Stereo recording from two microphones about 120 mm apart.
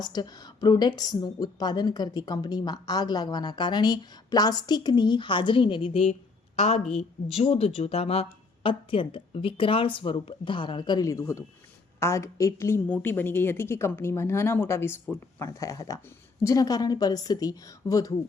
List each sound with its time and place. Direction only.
0.1 s a woman's voice: 35° left (ahead or behind)